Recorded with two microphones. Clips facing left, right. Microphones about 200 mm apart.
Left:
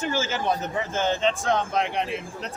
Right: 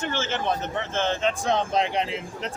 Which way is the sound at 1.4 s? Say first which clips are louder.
Right 1 dB; 20° right (ahead or behind).